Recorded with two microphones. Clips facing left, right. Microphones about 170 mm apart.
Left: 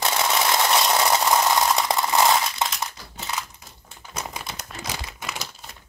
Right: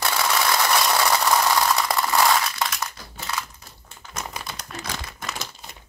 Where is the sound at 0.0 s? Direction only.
20° left (ahead or behind).